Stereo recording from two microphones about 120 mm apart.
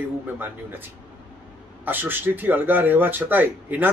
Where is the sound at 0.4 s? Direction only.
15° right (ahead or behind).